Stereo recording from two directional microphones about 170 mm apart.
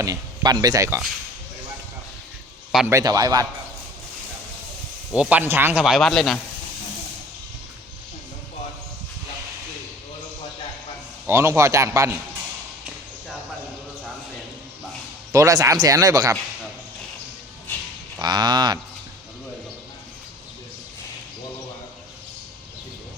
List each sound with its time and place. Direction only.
0.0 s speech: 20° right (ahead or behind)
2.9 s speech: 20° right (ahead or behind)
5.1 s a man's voice: 10° right (ahead or behind)
5.8 s speech: centre (ahead or behind)
11.3 s a man's voice: 15° right (ahead or behind)
15.3 s speech: 20° right (ahead or behind)
18.2 s speech: 25° right (ahead or behind)